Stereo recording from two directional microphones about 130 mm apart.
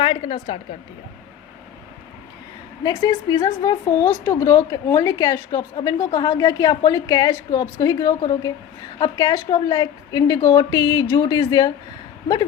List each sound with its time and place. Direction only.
0.0 s a woman's voice: 45° left (ahead or behind)
2.8 s a woman's voice: 30° left (ahead or behind)